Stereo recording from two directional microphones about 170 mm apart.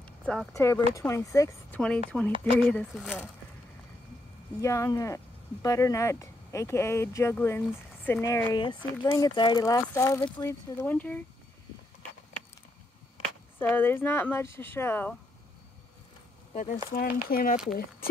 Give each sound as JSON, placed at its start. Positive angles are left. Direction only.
{"t": 0.0, "sound": "a sound", "side_deg": 5}
{"t": 0.5, "sound": "speech", "side_deg": 20}
{"t": 2.1, "sound": "speech", "side_deg": -5}
{"t": 2.6, "sound": "speech", "side_deg": 5}
{"t": 4.6, "sound": "speech", "side_deg": 20}
{"t": 13.6, "sound": "speech", "side_deg": 15}
{"t": 16.5, "sound": "speech", "side_deg": 55}